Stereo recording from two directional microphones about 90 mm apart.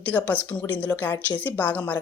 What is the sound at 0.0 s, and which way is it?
A woman's voice, 20° left (ahead or behind).